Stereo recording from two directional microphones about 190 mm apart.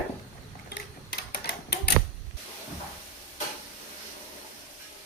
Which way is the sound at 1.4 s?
60° left (ahead or behind).